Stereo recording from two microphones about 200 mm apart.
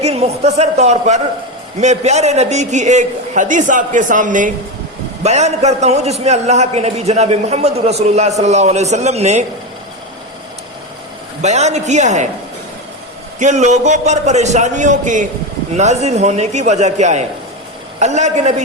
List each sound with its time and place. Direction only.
0.0 s a man's voice: 30° right (ahead or behind)
11.4 s a man's voice: 35° right (ahead or behind)
13.4 s a man's voice: 35° right (ahead or behind)